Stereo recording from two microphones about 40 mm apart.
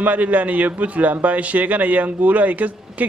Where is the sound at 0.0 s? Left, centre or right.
Right.